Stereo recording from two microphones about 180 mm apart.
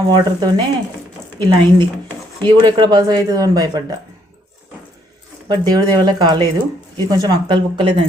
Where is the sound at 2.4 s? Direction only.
25° right (ahead or behind).